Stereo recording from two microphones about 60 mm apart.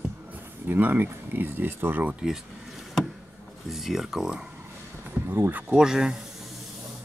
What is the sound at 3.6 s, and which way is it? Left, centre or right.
Speech, centre.